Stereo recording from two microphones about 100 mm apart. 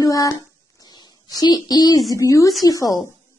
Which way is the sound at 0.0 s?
35° left (ahead or behind).